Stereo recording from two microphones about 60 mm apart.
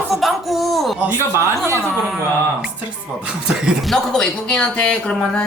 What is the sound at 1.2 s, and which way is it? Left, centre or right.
Speech, right.